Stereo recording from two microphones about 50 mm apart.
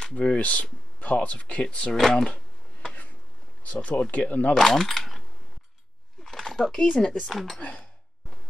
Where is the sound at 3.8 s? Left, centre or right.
Left.